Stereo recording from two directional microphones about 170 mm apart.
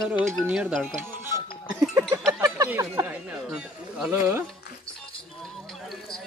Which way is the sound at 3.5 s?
10° right (ahead or behind).